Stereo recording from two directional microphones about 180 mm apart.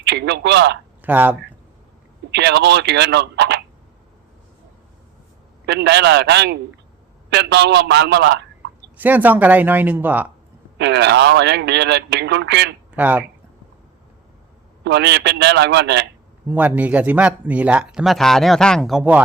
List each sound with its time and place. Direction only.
0.0 s speech: 70° right (ahead or behind)
1.0 s speech: 10° right (ahead or behind)
2.3 s speech: 70° right (ahead or behind)
5.6 s a man's voice: 70° right (ahead or behind)
9.0 s speech: 10° right (ahead or behind)
10.8 s speech: 70° right (ahead or behind)
13.0 s speech: 10° right (ahead or behind)
14.8 s speech: 70° right (ahead or behind)
16.5 s speech: 10° right (ahead or behind)